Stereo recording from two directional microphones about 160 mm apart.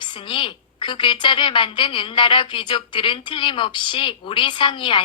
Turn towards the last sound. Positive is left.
turn(degrees=30)  # may be behind; listen again after turning